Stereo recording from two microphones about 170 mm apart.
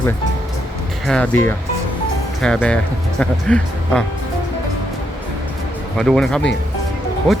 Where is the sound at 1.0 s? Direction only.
5° left (ahead or behind).